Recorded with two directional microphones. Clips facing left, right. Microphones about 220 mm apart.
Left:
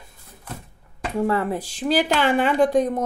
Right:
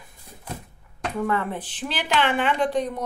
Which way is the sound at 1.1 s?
30° left (ahead or behind).